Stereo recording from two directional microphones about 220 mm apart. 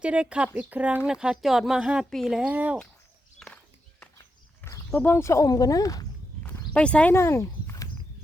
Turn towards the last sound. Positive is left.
turn(degrees=15)  # may be behind; listen again after turning